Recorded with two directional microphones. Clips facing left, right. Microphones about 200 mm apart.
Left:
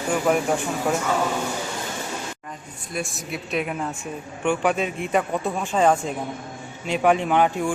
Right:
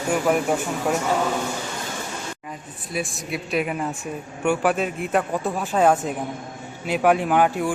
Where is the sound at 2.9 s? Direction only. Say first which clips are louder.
Right 2 dB; centre (ahead or behind).